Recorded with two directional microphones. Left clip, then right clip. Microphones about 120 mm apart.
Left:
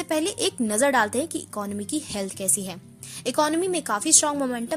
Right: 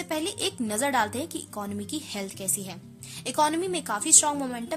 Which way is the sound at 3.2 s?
30° left (ahead or behind).